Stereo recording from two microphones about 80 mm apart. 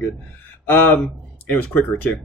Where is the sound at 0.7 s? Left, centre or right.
Left.